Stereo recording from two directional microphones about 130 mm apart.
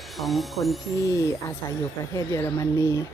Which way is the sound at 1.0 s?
25° left (ahead or behind).